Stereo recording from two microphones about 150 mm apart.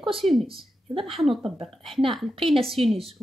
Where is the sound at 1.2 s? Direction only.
Centre (ahead or behind).